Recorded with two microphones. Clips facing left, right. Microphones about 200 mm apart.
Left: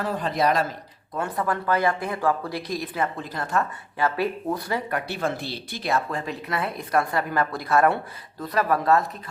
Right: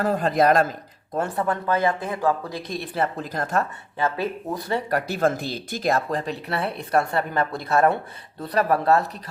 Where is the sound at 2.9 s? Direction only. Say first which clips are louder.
Right 2 dB; 40° right (ahead or behind).